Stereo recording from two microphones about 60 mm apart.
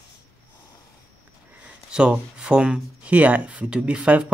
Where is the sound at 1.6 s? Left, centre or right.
Centre.